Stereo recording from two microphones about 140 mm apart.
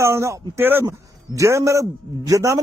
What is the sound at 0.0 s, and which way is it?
A man's voice, 20° right (ahead or behind).